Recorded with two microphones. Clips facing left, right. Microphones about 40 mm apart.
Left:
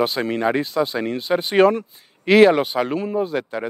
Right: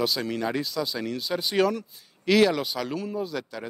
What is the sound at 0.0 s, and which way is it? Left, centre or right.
Speech, left.